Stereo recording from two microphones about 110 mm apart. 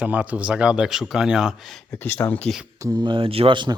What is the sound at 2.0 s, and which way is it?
Speech, 20° left (ahead or behind).